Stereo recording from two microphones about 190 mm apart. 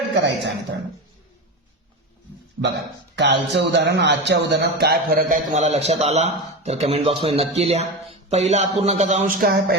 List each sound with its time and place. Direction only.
0.1 s speech: 65° right (ahead or behind)
3.2 s speech: 65° right (ahead or behind)